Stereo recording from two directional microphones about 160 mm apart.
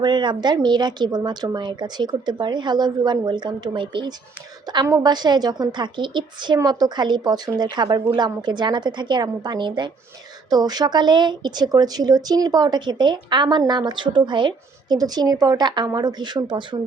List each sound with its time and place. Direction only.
0.0 s speech: 30° right (ahead or behind)